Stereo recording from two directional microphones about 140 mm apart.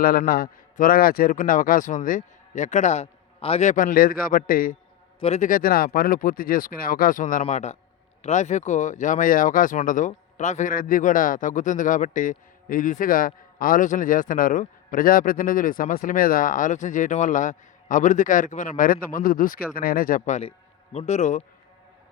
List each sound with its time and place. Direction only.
0.0 s speech: 90° left
5.2 s speech: 50° left (ahead or behind)
5.5 s speech: 85° left
7.4 s speech: 50° left (ahead or behind)